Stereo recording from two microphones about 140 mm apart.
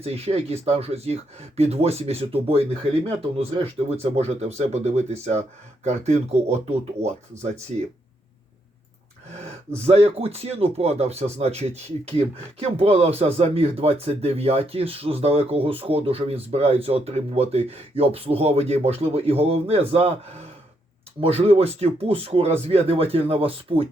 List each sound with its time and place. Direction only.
0.0 s speech: 45° right (ahead or behind)
9.7 s speech: 45° right (ahead or behind)
21.2 s speech: 45° right (ahead or behind)